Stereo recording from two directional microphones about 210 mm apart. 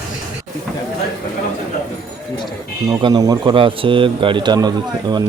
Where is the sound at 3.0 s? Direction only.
20° right (ahead or behind).